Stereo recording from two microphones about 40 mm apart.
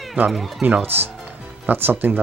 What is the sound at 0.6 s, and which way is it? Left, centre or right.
Speech, right.